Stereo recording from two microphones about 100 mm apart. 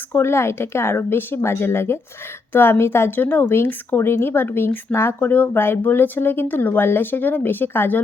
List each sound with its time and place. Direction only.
0.1 s speech: 25° left (ahead or behind)